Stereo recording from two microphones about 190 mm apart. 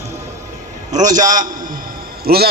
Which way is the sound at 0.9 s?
40° right (ahead or behind).